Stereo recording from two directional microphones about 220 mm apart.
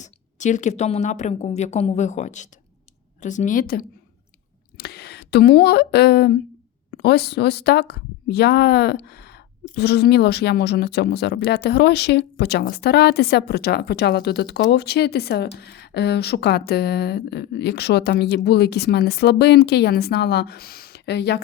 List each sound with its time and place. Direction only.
0.0 s speech: 35° left (ahead or behind); by 21.4 s 50° left (ahead or behind)